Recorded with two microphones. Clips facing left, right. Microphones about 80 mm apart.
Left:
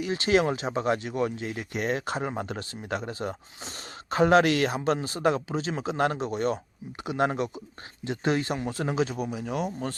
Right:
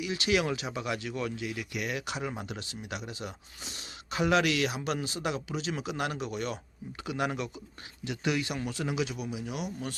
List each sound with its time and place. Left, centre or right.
0.0 s speech: left